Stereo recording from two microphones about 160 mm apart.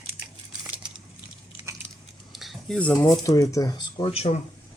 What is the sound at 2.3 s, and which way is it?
Cutlery, centre (ahead or behind).